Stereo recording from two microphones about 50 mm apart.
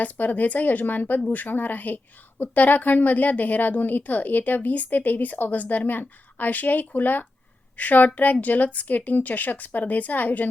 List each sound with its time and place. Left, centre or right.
0.0 s a woman's voice: left